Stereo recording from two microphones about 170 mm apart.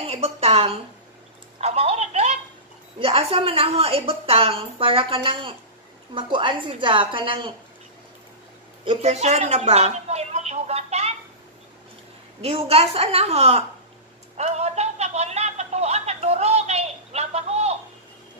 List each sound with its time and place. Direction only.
0.0 s a woman's voice: 35° right (ahead or behind)
1.6 s telephone: 40° right (ahead or behind)
3.0 s a woman's voice: 35° right (ahead or behind)
8.8 s a woman's voice: 40° right (ahead or behind)
12.4 s a woman's voice: 35° right (ahead or behind)
14.3 s a sound: 40° right (ahead or behind)